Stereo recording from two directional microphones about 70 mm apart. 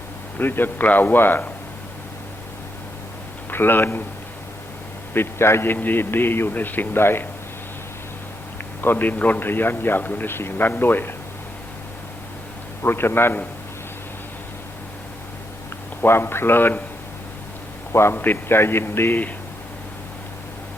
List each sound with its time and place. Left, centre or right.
0.3 s a man's voice: left
3.5 s a man's voice: left
5.1 s a man's voice: left
8.8 s a man's voice: left
12.8 s a man's voice: left
16.0 s a man's voice: left
17.9 s a man's voice: left